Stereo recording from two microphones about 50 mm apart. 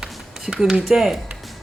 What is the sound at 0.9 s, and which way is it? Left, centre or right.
Speech, centre.